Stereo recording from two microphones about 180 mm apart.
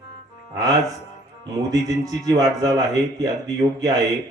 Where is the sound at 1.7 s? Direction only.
20° right (ahead or behind).